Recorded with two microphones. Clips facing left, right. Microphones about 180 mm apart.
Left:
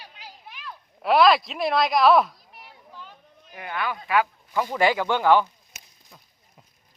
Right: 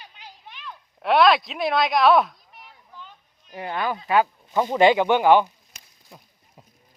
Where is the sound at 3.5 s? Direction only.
30° right (ahead or behind).